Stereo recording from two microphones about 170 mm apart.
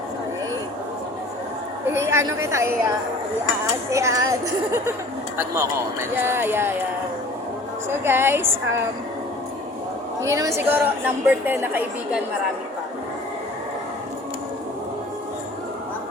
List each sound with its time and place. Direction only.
1.9 s a woman's voice: 15° right (ahead or behind)
3.9 s a woman's voice: 20° right (ahead or behind)
7.9 s a woman's voice: 15° right (ahead or behind)
10.2 s a woman's voice: 15° right (ahead or behind)